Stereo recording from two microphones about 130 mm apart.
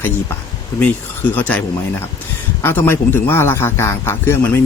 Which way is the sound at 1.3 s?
10° left (ahead or behind).